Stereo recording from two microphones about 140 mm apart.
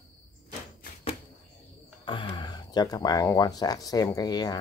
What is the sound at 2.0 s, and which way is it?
Speech, 35° left (ahead or behind).